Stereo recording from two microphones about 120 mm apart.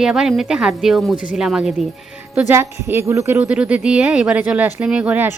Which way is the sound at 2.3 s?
20° right (ahead or behind).